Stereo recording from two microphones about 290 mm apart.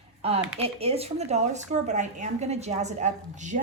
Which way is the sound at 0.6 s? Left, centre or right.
Centre.